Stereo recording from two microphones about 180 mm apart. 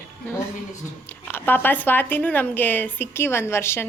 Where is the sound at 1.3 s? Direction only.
10° left (ahead or behind).